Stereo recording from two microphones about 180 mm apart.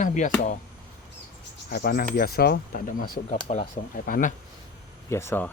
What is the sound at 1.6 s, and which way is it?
Speech, 55° left (ahead or behind).